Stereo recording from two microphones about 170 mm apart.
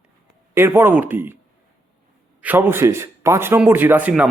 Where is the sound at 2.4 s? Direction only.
10° right (ahead or behind).